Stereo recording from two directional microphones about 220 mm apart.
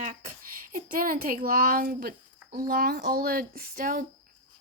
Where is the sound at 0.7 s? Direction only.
40° right (ahead or behind).